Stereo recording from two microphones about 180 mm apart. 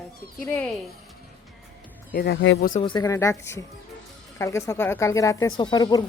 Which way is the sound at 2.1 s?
70° left (ahead or behind).